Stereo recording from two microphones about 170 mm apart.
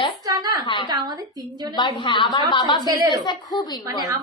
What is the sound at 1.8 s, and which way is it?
A woman's voice, 25° left (ahead or behind).